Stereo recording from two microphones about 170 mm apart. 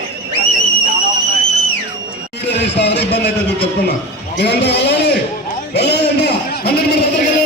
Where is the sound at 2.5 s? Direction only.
85° left.